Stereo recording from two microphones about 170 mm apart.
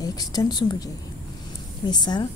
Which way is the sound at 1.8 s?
25° left (ahead or behind).